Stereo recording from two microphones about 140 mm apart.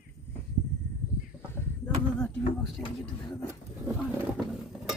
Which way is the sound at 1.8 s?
5° left (ahead or behind).